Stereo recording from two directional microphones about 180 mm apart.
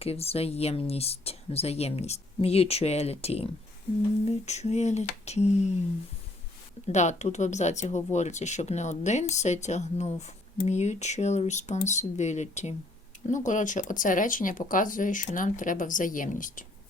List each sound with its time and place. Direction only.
0.0 s speech: 35° left (ahead or behind)
6.8 s speech: 40° left (ahead or behind)